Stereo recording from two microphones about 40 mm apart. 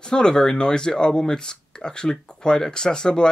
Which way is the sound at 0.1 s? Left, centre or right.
Centre.